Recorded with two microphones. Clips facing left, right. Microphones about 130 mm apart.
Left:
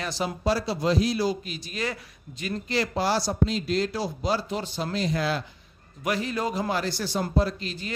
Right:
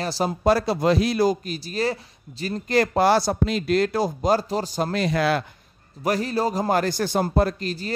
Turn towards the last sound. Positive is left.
turn(degrees=-40)  # may be behind; listen again after turning